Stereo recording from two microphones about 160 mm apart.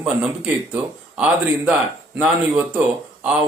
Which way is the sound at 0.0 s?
10° right (ahead or behind).